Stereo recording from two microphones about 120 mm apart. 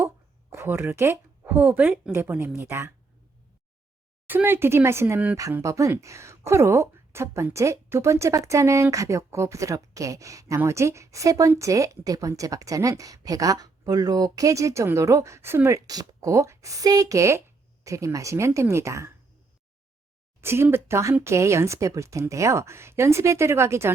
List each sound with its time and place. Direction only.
0.5 s a woman's voice: 20° right (ahead or behind)
4.3 s a woman's voice: 15° right (ahead or behind)
20.4 s a woman's voice: 20° right (ahead or behind)